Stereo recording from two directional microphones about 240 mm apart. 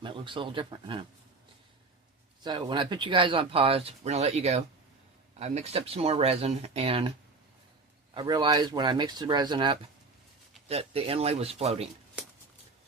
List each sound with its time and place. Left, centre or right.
0.0 s speech: centre
2.4 s speech: centre
8.1 s speech: centre